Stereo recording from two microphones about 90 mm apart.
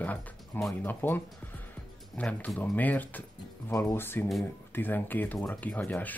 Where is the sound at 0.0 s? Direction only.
20° left (ahead or behind).